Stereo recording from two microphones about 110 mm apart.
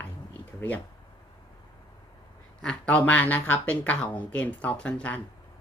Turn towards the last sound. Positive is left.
turn(degrees=10)  # may be behind; listen again after turning